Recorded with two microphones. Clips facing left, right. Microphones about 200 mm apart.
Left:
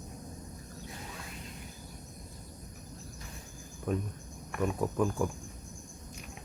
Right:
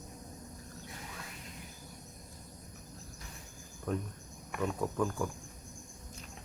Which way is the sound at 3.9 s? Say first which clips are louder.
Left 3 dB; 15° left (ahead or behind).